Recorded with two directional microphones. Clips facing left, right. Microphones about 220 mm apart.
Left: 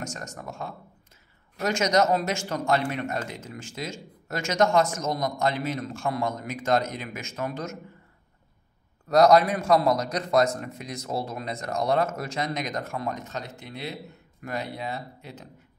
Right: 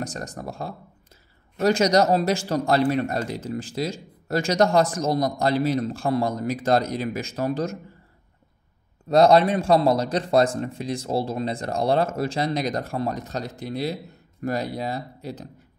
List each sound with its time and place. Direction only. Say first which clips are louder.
0.0 s speech: right 5 dB; 35° right (ahead or behind)
9.1 s speech: right 2 dB; 30° right (ahead or behind)